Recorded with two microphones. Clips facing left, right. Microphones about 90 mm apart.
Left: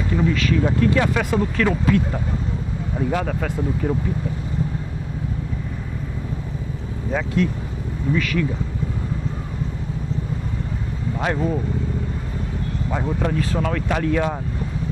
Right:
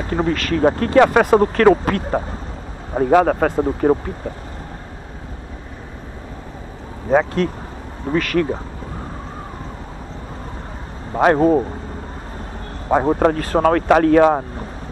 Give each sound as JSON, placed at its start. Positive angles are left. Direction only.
{"t": 0.0, "sound": "speech", "side_deg": -50}
{"t": 7.1, "sound": "speech", "side_deg": -50}
{"t": 11.1, "sound": "speech", "side_deg": -50}
{"t": 12.8, "sound": "speech", "side_deg": -45}